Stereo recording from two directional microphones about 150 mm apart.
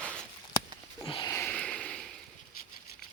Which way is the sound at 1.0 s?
30° left (ahead or behind).